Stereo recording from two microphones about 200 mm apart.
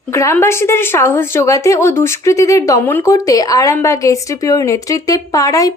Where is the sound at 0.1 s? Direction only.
15° left (ahead or behind).